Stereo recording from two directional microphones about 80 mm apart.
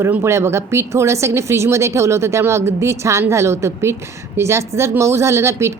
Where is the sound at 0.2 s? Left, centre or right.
Right.